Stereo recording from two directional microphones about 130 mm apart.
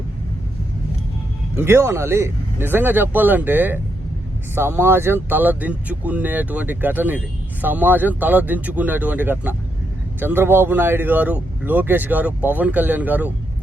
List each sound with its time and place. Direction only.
1.5 s speech: 20° right (ahead or behind)